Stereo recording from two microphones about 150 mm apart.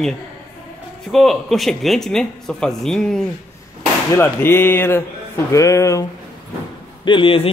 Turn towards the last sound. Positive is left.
turn(degrees=40)  # may be behind; listen again after turning